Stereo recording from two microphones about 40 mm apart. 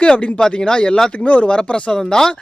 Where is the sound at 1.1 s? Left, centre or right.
Left.